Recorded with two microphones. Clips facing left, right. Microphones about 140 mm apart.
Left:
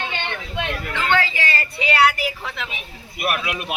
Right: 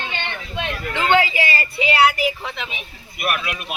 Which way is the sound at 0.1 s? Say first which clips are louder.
Left 1 dB; 15° left (ahead or behind).